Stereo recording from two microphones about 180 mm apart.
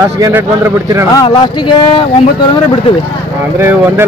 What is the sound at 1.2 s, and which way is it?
Speech, 25° left (ahead or behind).